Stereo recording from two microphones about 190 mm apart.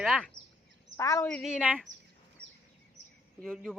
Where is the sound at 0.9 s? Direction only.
15° left (ahead or behind).